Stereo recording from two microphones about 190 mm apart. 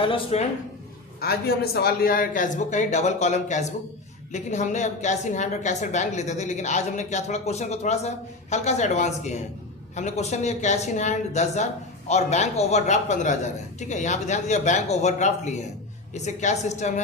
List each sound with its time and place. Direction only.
0.0 s speech: 30° left (ahead or behind)
1.2 s speech: 55° left (ahead or behind); by 16.9 s 40° left (ahead or behind)